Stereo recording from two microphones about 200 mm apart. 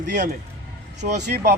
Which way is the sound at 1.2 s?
50° right (ahead or behind).